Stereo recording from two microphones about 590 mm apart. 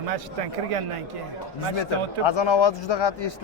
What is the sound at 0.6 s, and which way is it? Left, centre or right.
Speech, right.